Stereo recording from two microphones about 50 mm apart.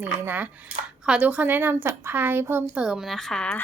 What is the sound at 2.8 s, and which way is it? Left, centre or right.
Speech, centre.